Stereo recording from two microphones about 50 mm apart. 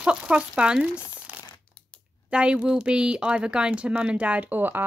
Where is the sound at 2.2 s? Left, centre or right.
Right.